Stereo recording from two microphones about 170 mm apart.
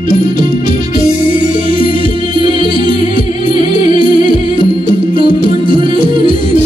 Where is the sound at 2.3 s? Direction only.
30° right (ahead or behind).